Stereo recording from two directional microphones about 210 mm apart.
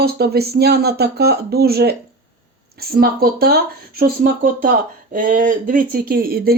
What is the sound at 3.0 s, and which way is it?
Speech, 45° right (ahead or behind).